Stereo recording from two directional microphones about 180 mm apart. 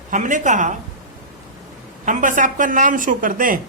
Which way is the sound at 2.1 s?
45° right (ahead or behind).